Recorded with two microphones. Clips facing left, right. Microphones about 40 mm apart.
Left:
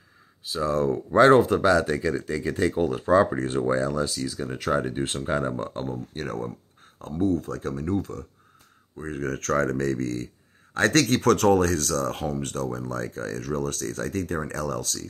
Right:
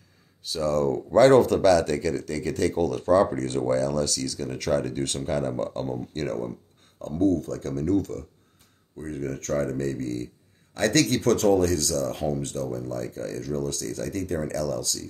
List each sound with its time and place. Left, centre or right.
0.5 s speech: centre
9.2 s speech: left
10.8 s speech: left